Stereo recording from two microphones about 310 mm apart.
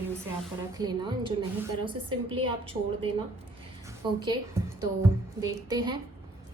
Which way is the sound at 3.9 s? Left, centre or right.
Centre.